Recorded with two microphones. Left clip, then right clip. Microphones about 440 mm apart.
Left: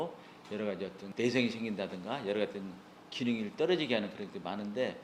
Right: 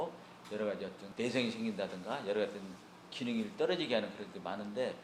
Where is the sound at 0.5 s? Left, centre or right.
Left.